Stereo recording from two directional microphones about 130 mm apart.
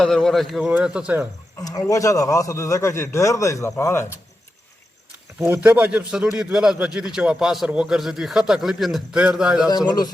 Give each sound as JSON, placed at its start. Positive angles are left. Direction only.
{"t": 0.0, "sound": "a man's voice", "side_deg": 5}
{"t": 1.5, "sound": "a man's voice", "side_deg": 25}
{"t": 5.6, "sound": "a man's voice", "side_deg": -15}
{"t": 9.6, "sound": "a man's voice", "side_deg": 30}